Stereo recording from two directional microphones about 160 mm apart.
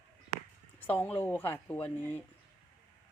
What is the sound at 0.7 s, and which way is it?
Speech, 10° left (ahead or behind).